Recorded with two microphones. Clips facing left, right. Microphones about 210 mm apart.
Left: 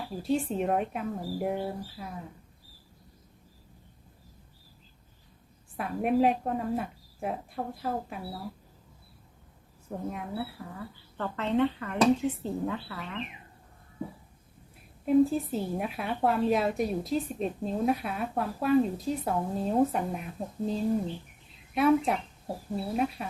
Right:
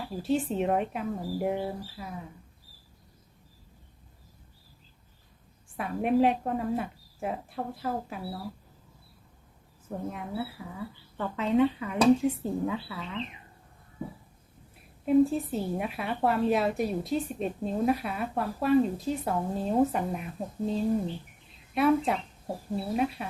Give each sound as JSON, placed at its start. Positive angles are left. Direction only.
{"t": 0.1, "sound": "a woman's voice", "side_deg": 0}
{"t": 5.7, "sound": "a woman's voice", "side_deg": 0}
{"t": 10.1, "sound": "a woman's voice", "side_deg": 0}
{"t": 15.0, "sound": "a woman's voice", "side_deg": 0}